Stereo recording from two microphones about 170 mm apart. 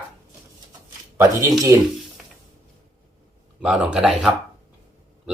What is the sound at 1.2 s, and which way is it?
Speech, 20° right (ahead or behind).